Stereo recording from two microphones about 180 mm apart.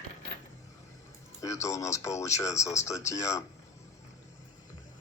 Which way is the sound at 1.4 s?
15° left (ahead or behind).